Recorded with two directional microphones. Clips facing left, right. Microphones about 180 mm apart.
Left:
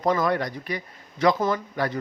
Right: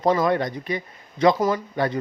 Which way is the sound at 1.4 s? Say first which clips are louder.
Right 2 dB; 10° right (ahead or behind).